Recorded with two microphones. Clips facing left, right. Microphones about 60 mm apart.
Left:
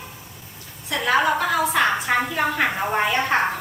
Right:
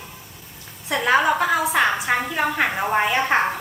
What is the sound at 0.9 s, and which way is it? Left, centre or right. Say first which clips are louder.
Speech: right 2 dB; right.